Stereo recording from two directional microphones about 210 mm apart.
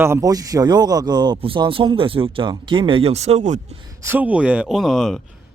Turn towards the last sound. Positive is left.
turn(degrees=0)  # may be behind; listen again after turning